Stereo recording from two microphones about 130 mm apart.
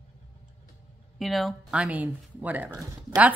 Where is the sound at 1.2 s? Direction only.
Centre (ahead or behind).